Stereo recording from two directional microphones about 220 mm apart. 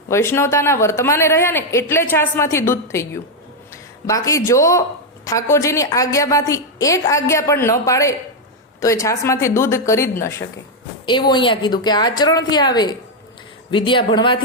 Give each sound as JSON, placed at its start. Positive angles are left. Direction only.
{"t": 0.1, "sound": "a woman's voice", "side_deg": 10}